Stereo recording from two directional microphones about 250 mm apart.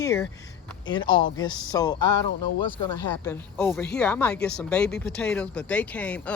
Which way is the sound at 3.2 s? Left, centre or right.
Centre.